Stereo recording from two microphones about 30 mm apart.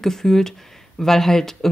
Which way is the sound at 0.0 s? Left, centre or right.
Centre.